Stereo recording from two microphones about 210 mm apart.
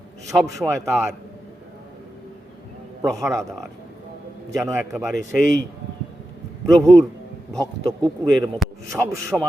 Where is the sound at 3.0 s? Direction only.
15° right (ahead or behind).